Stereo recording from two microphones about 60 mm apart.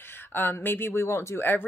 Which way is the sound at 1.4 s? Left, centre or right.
Left.